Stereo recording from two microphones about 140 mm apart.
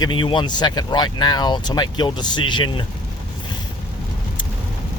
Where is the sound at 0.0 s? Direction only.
35° left (ahead or behind).